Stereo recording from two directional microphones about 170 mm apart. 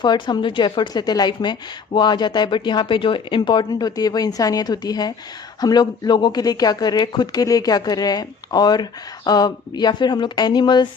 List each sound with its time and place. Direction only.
0.0 s speech: 25° left (ahead or behind)